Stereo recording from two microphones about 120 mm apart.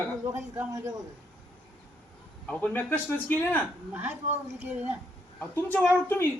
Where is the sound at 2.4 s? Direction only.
15° left (ahead or behind).